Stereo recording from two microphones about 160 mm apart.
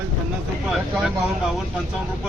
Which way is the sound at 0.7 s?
5° right (ahead or behind).